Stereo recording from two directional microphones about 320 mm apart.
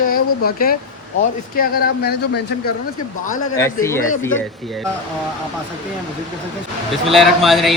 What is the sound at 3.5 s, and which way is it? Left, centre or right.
Speech, centre.